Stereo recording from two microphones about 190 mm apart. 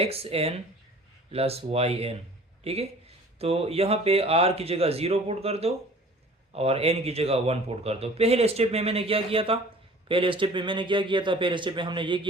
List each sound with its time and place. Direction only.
0.0 s a man's voice: 30° right (ahead or behind)